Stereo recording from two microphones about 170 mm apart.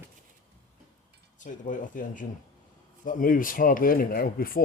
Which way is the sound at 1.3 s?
50° left (ahead or behind).